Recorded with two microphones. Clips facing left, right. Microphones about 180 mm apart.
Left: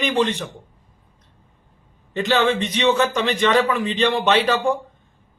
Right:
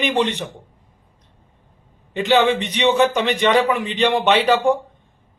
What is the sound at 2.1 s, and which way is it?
Speech, 15° right (ahead or behind).